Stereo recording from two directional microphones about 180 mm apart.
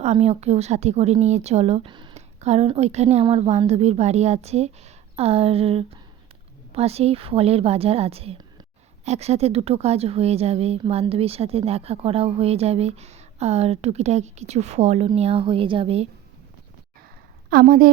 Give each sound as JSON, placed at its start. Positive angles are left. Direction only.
{"t": 0.0, "sound": "a woman's voice", "side_deg": -35}
{"t": 2.1, "sound": "a woman's voice", "side_deg": -35}
{"t": 17.5, "sound": "a woman's voice", "side_deg": -50}